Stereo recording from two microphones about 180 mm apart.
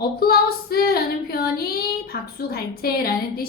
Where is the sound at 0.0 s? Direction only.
60° left (ahead or behind).